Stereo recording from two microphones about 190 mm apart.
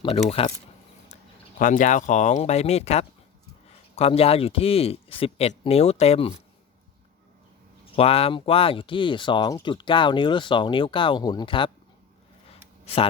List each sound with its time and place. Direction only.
0.0 s speech: 30° left (ahead or behind)
1.5 s speech: 45° left (ahead or behind)
7.9 s speech: 30° left (ahead or behind)
12.8 s a sound: 35° left (ahead or behind)